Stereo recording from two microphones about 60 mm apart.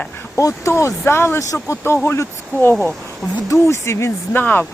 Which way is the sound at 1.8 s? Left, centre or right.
Left.